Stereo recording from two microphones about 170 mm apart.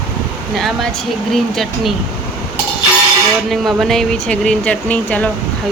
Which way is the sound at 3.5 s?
Centre (ahead or behind).